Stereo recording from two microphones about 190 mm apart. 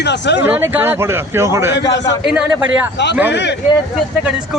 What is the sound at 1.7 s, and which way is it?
Speech, 65° left (ahead or behind).